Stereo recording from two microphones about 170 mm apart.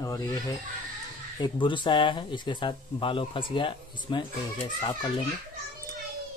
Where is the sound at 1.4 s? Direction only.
30° left (ahead or behind).